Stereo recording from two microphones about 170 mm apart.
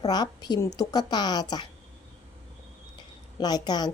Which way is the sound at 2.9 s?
25° left (ahead or behind).